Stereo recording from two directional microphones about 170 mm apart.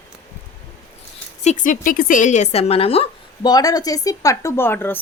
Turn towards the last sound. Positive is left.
turn(degrees=15)  # may be behind; listen again after turning